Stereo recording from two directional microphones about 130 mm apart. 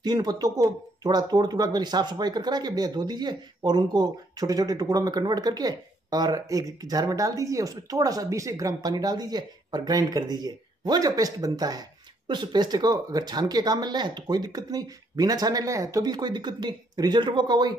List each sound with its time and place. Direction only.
0.0 s speech: 30° right (ahead or behind)